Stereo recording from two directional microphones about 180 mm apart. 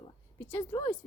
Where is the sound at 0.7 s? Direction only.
25° left (ahead or behind).